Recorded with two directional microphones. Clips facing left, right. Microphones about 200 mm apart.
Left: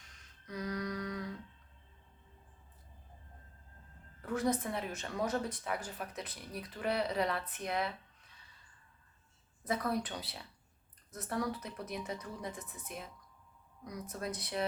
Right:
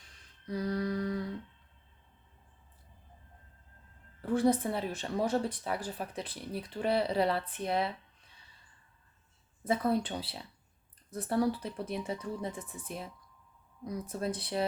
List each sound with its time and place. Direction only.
0.4 s a sound: 30° right (ahead or behind)
4.2 s speech: 30° right (ahead or behind)
9.6 s speech: 30° right (ahead or behind)